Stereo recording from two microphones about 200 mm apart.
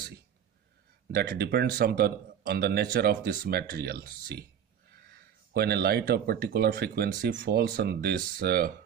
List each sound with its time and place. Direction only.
1.1 s speech: 55° right (ahead or behind)